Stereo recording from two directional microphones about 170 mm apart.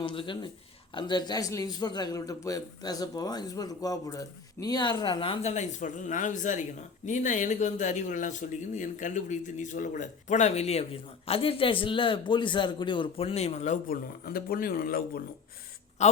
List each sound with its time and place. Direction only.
0.0 s a man's voice: 30° left (ahead or behind)
13.9 s speech: 60° left (ahead or behind)
16.0 s a man's voice: 40° left (ahead or behind)